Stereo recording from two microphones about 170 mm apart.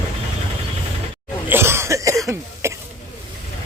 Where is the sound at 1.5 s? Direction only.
15° right (ahead or behind).